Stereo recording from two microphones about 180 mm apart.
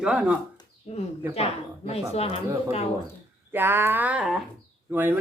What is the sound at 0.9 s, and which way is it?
Speech, 30° left (ahead or behind).